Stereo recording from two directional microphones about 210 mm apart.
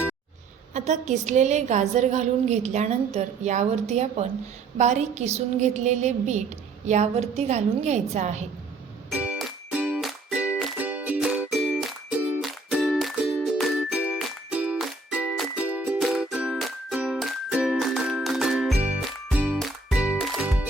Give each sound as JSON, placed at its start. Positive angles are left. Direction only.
{"t": 0.7, "sound": "a woman's voice", "side_deg": -35}
{"t": 9.0, "sound": "music", "side_deg": -5}